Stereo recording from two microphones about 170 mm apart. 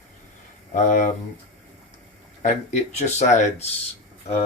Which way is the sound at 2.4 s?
40° left (ahead or behind).